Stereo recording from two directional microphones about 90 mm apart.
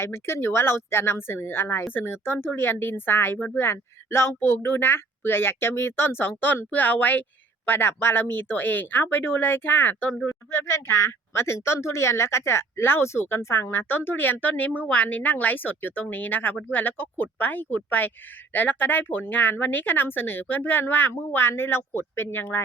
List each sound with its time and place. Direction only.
0.0 s speech: 30° left (ahead or behind)